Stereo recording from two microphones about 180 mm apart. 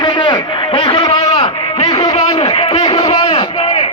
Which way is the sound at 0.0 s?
25° left (ahead or behind).